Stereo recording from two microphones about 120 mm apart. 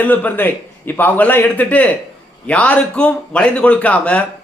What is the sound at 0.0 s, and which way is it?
A man's voice, 15° left (ahead or behind).